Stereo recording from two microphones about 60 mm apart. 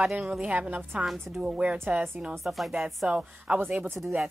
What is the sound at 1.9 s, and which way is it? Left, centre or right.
Speech, right.